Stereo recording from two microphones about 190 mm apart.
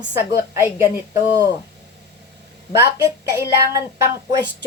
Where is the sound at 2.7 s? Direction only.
15° right (ahead or behind).